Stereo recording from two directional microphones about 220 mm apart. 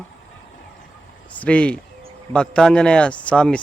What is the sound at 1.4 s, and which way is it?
Speech, 5° left (ahead or behind).